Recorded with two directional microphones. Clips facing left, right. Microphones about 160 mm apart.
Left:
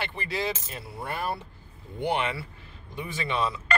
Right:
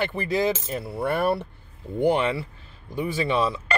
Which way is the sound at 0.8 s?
65° right (ahead or behind).